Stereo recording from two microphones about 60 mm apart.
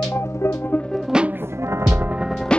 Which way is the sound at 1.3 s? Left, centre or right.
Right.